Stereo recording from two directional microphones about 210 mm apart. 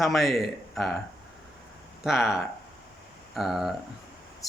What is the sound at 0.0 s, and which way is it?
Speech, centre (ahead or behind).